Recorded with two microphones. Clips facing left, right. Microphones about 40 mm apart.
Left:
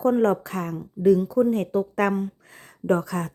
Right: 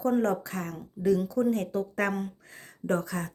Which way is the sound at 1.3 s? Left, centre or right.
Centre.